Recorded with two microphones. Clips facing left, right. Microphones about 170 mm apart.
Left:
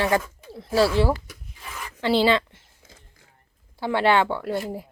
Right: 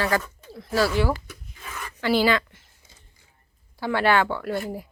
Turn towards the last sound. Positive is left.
turn(degrees=25)  # may be behind; listen again after turning